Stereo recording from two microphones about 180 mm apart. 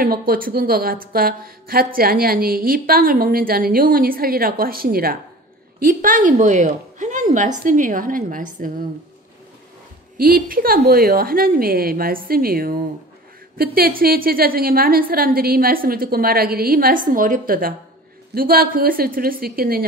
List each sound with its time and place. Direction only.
0.0 s a woman's voice: 55° right (ahead or behind)
10.1 s a woman's voice: 55° right (ahead or behind)